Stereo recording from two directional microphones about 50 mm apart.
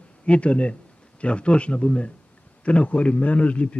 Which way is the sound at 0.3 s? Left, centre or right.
Left.